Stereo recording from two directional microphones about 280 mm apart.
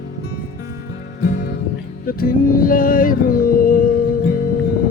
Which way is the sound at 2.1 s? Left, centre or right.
Left.